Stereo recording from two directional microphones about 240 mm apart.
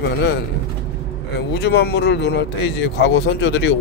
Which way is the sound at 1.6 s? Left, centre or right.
Left.